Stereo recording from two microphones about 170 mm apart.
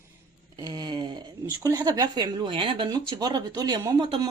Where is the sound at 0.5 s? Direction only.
25° right (ahead or behind).